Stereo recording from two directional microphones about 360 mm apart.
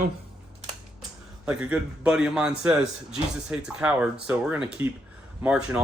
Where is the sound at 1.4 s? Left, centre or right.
Centre.